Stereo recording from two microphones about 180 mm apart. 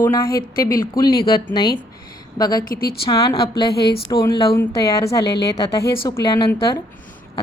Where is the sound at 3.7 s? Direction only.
60° left (ahead or behind).